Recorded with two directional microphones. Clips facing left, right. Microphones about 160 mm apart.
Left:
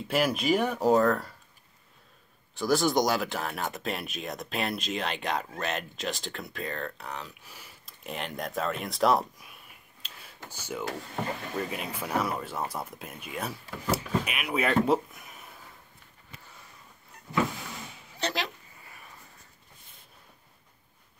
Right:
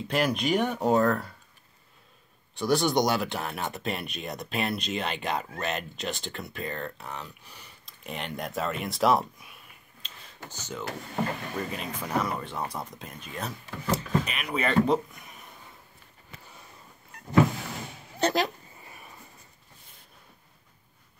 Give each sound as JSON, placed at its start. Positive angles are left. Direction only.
{"t": 0.1, "sound": "speech", "side_deg": 5}
{"t": 2.5, "sound": "speech", "side_deg": 0}
{"t": 10.0, "sound": "a sound", "side_deg": 10}
{"t": 11.5, "sound": "speech", "side_deg": 5}
{"t": 18.2, "sound": "speech", "side_deg": -45}
{"t": 18.8, "sound": "a sound", "side_deg": -20}